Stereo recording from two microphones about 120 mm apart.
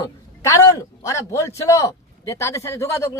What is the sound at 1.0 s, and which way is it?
A man's voice, 25° left (ahead or behind).